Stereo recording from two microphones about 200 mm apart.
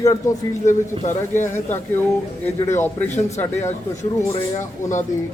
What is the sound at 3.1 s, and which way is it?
Speech, 35° left (ahead or behind).